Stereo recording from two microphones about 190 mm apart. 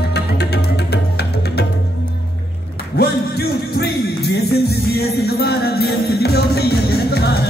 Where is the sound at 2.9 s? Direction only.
55° left (ahead or behind).